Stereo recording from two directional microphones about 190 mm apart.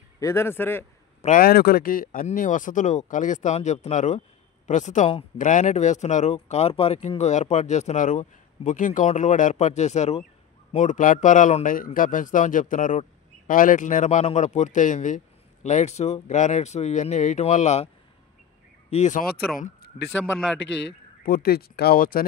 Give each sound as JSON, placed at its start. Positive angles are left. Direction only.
{"t": 0.2, "sound": "speech", "side_deg": 15}
{"t": 1.2, "sound": "speech", "side_deg": 50}
{"t": 18.9, "sound": "speech", "side_deg": 40}
{"t": 19.3, "sound": "speech", "side_deg": 50}
{"t": 21.2, "sound": "speech", "side_deg": 50}